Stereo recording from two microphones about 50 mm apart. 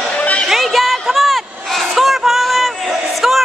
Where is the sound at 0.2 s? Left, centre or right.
Left.